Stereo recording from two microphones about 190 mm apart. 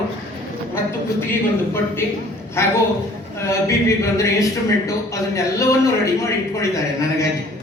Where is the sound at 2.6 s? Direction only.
15° left (ahead or behind).